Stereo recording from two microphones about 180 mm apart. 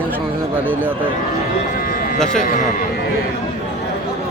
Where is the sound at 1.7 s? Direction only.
50° left (ahead or behind).